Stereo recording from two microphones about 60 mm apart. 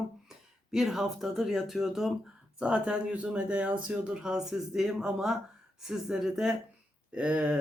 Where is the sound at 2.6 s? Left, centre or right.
Centre.